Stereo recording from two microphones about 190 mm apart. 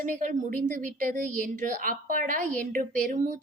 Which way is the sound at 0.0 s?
45° right (ahead or behind).